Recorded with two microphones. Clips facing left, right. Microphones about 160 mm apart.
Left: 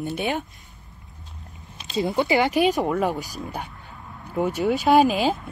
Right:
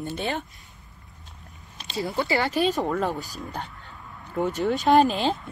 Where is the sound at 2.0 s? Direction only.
20° left (ahead or behind).